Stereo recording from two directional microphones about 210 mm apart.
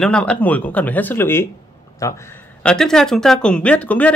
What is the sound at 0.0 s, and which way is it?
Speech, 5° left (ahead or behind).